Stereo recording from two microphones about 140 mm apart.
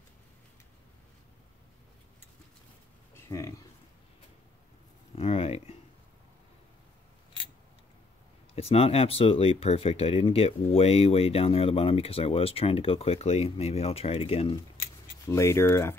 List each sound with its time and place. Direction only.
3.2 s speech: 20° left (ahead or behind)
5.1 s a sound: 45° left (ahead or behind)
8.5 s speech: 45° left (ahead or behind)
15.2 s speech: 20° left (ahead or behind)